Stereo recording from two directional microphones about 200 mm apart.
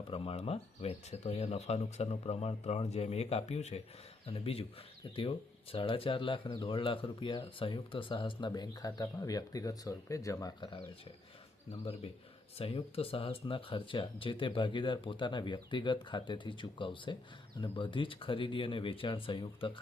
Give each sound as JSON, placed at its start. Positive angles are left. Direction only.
{"t": 0.1, "sound": "speech", "side_deg": 30}
{"t": 12.5, "sound": "speech", "side_deg": 30}